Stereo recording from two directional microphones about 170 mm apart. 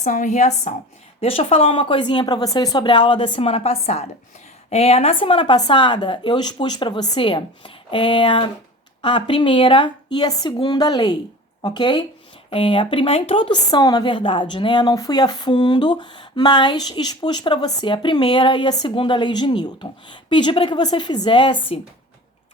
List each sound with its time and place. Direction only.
0.0 s speech: 45° left (ahead or behind); by 21.8 s 30° left (ahead or behind)